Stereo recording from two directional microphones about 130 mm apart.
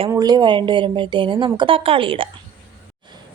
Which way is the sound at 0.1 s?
30° right (ahead or behind).